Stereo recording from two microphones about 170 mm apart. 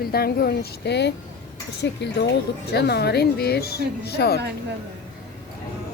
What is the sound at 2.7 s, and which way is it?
Speech, 75° left (ahead or behind).